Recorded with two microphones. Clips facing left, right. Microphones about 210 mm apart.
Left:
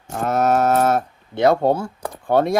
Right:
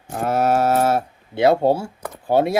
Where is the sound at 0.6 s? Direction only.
30° right (ahead or behind).